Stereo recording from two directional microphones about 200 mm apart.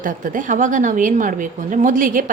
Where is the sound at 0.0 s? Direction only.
40° right (ahead or behind).